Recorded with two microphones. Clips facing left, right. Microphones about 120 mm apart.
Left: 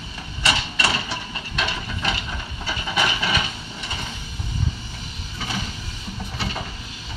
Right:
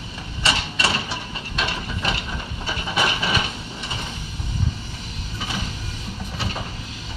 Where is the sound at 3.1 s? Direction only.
5° right (ahead or behind).